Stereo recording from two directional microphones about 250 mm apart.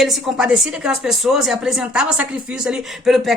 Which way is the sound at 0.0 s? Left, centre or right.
Centre.